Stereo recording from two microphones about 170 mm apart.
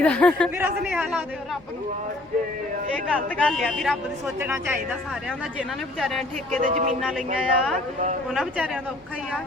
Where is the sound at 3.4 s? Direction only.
Centre (ahead or behind).